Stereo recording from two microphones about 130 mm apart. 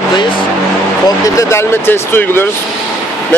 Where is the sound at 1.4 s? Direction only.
20° left (ahead or behind).